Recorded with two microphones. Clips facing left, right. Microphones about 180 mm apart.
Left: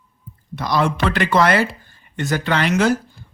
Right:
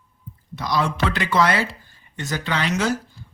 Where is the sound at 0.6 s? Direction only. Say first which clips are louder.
Left 3 dB; 55° left (ahead or behind).